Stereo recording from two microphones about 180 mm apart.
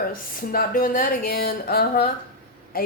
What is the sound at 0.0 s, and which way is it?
A woman's voice, 55° left (ahead or behind).